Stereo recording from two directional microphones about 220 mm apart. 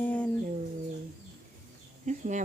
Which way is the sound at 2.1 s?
35° right (ahead or behind).